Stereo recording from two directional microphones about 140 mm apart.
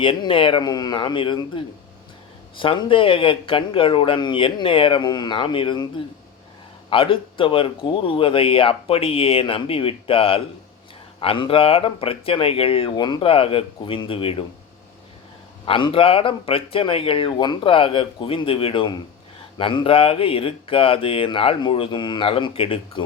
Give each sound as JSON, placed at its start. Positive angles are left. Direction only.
{"t": 0.0, "sound": "speech", "side_deg": 40}
{"t": 6.9, "sound": "speech", "side_deg": 40}
{"t": 15.6, "sound": "speech", "side_deg": 40}